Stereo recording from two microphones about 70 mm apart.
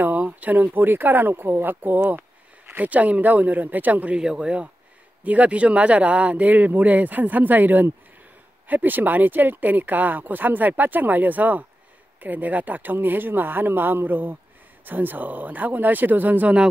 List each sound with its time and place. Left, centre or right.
0.0 s speech: right